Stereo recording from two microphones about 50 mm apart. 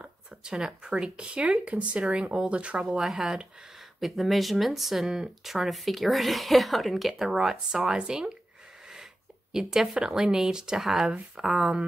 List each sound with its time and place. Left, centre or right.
0.0 s a sound: centre
0.8 s speech: centre
3.0 s speech: centre
9.5 s speech: centre